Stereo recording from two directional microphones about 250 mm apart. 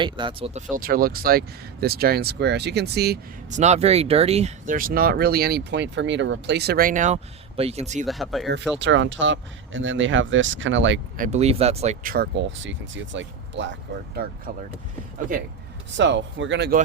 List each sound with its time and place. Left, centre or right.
0.0 s speech: centre; by 3.6 s right
3.6 s speech: right
8.0 s speech: centre
8.8 s speech: right
11.2 s speech: right
14.5 s speech: right
16.0 s speech: right